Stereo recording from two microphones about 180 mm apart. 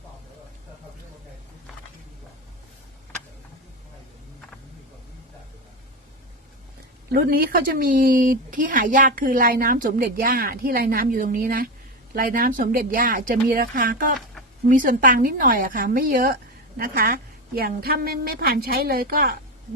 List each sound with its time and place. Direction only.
7.1 s a woman's voice: 55° right (ahead or behind)